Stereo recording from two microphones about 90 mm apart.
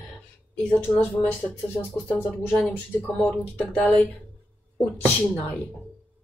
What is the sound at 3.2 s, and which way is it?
Speech, 5° left (ahead or behind).